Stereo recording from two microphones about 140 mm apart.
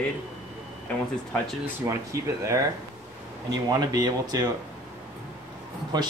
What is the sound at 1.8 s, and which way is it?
Speech, 20° right (ahead or behind).